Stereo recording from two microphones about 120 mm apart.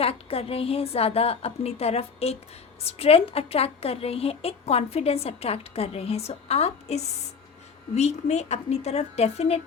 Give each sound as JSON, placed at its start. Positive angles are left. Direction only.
{"t": 0.0, "sound": "a woman's voice", "side_deg": 55}